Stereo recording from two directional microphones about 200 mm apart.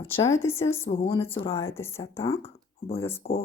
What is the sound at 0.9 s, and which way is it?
Speech, 35° left (ahead or behind).